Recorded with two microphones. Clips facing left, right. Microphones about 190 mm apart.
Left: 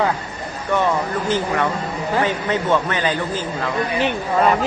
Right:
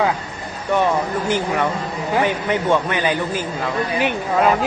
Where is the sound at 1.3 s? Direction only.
15° right (ahead or behind).